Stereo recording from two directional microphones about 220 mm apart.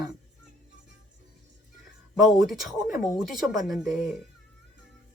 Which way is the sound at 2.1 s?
Centre (ahead or behind).